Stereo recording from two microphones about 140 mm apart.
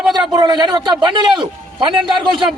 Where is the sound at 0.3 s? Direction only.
30° right (ahead or behind).